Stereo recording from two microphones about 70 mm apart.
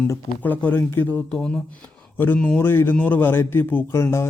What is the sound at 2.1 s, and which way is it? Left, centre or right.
A man's voice, left.